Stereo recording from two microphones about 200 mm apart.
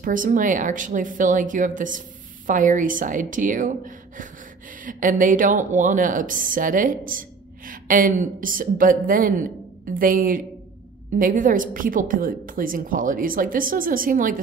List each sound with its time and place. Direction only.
0.0 s a woman's voice: 40° right (ahead or behind)